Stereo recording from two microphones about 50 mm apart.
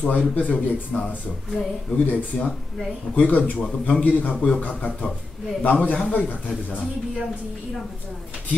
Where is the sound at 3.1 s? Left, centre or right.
Left.